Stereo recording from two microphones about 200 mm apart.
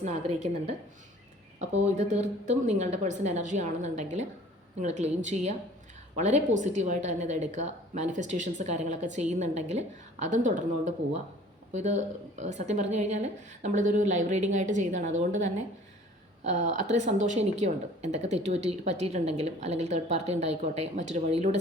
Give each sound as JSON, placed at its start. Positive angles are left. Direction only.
{"t": 0.0, "sound": "speech", "side_deg": -35}
{"t": 1.6, "sound": "speech", "side_deg": -35}
{"t": 16.5, "sound": "speech", "side_deg": -35}